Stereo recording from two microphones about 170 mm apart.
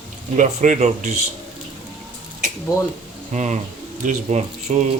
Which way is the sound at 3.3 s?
45° right (ahead or behind).